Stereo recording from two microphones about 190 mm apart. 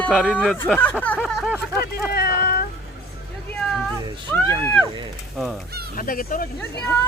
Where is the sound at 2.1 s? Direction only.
55° left (ahead or behind).